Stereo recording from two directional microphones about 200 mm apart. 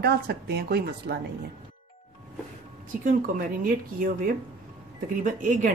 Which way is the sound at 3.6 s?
45° right (ahead or behind).